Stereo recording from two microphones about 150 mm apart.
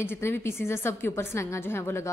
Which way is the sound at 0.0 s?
15° left (ahead or behind).